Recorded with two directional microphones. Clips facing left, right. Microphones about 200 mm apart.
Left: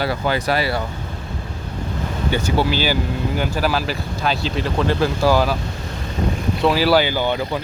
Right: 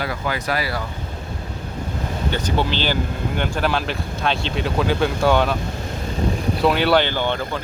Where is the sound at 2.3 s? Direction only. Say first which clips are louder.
Left 4 dB; 10° left (ahead or behind).